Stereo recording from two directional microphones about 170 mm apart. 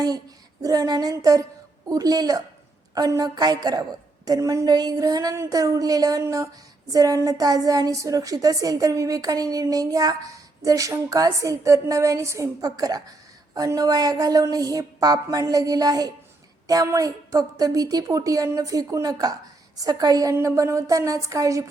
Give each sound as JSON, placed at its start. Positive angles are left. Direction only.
{"t": 0.6, "sound": "a woman's voice", "side_deg": -20}